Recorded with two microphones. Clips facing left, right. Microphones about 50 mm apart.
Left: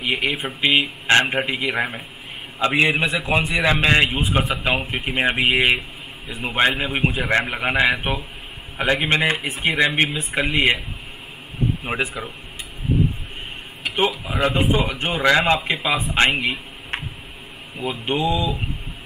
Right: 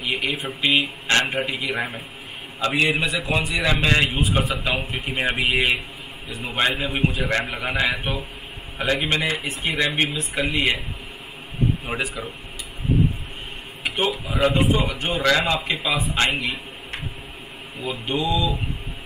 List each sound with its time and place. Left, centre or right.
0.0 s a man's voice: left
11.8 s a man's voice: left
14.2 s a man's voice: centre; by 17.0 s left
18.0 s speech: left